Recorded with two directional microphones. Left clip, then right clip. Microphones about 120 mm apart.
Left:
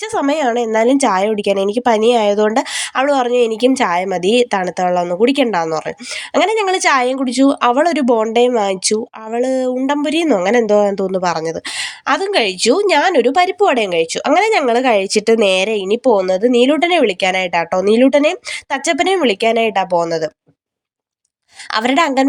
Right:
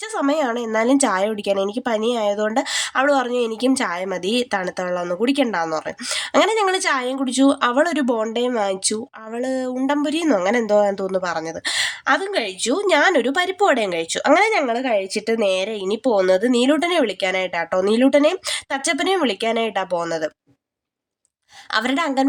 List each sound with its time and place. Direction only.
0.1 s speech: 45° left (ahead or behind)
2.7 s speech: 30° left (ahead or behind)
6.9 s a woman's voice: 60° left (ahead or behind)
7.2 s speech: 35° left (ahead or behind)
8.3 s speech: 45° left (ahead or behind)
12.3 s a woman's voice: 55° left (ahead or behind)
12.7 s speech: 40° left (ahead or behind)
14.7 s a woman's voice: 70° left (ahead or behind)
15.7 s speech: 40° left (ahead or behind)
21.7 s speech: 40° left (ahead or behind)